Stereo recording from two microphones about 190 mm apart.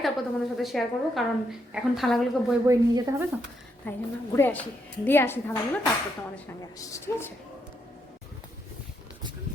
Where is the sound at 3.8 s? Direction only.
10° left (ahead or behind).